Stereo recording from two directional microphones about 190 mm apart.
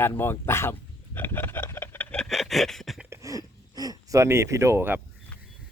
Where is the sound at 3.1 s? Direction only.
15° right (ahead or behind).